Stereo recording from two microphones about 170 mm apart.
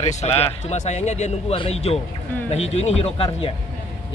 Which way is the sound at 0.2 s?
40° left (ahead or behind).